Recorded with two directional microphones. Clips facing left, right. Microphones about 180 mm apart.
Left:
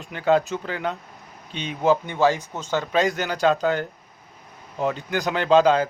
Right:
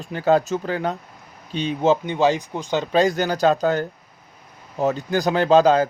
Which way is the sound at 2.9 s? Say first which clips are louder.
Right 5 dB; 35° right (ahead or behind).